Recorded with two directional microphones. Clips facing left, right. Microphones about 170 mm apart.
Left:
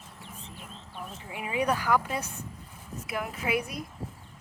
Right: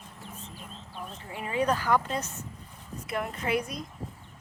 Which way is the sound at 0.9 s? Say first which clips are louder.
Even; 5° left (ahead or behind).